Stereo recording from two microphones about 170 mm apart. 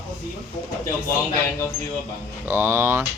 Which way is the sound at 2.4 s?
15° right (ahead or behind).